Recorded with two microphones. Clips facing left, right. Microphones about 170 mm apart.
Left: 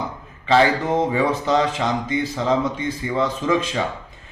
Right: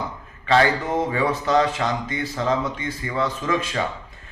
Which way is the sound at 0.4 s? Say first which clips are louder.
Left 2 dB; 20° left (ahead or behind).